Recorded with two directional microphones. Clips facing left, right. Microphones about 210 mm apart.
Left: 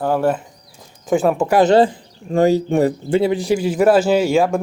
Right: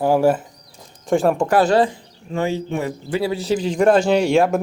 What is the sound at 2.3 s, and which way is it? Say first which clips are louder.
Speech: left 7 dB; 40° left (ahead or behind).